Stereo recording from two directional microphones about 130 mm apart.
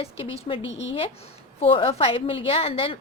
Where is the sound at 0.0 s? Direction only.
50° left (ahead or behind).